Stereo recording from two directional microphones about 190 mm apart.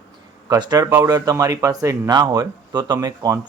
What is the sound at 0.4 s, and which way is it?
Speech, 20° right (ahead or behind).